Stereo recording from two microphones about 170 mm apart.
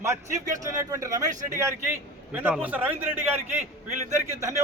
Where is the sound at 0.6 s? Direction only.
20° right (ahead or behind).